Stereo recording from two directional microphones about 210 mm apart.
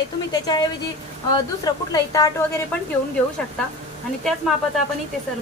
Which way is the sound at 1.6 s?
20° left (ahead or behind).